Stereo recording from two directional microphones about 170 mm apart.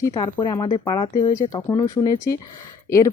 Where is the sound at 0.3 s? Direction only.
20° left (ahead or behind).